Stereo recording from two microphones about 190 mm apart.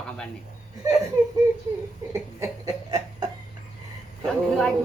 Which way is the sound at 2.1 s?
15° right (ahead or behind).